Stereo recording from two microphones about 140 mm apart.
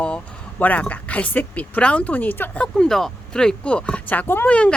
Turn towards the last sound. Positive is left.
turn(degrees=10)  # may be behind; listen again after turning